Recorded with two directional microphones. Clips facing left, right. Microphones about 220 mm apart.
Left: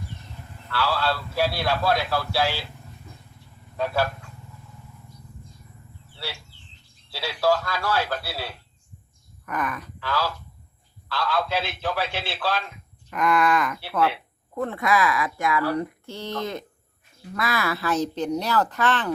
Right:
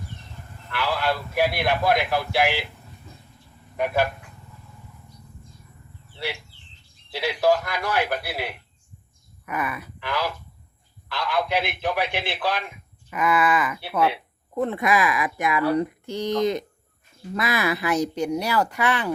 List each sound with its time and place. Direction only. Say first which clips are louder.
0.7 s speech: even; 15° right (ahead or behind)
3.8 s speech: right 2 dB; 15° right (ahead or behind)
6.1 s speech: right 5 dB; 15° right (ahead or behind)
13.1 s speech: even; 5° right (ahead or behind)
13.8 s speech: right 1 dB; 15° right (ahead or behind)